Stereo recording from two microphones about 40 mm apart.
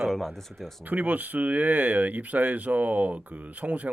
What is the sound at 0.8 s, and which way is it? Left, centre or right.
Speech, right.